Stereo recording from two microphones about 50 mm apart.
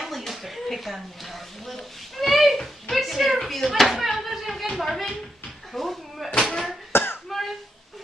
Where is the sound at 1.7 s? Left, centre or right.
Centre.